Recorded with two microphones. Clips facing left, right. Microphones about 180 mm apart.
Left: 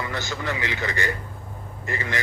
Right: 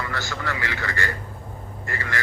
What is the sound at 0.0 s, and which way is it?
A man's voice, 20° left (ahead or behind).